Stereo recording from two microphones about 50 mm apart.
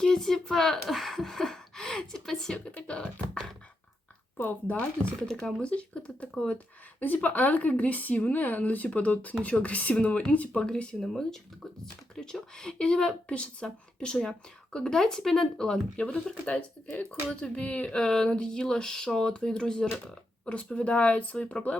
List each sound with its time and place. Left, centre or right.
0.0 s speech: centre
2.8 s beatboxing: left
4.4 s speech: left
4.8 s speech: left
5.3 s speech: centre
5.6 s speech: left
10.5 s speech: centre
17.9 s speech: centre
20.7 s speech: left